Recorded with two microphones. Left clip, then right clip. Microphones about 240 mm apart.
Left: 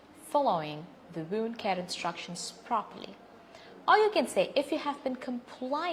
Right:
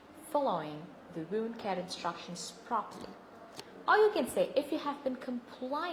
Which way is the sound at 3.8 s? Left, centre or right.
Left.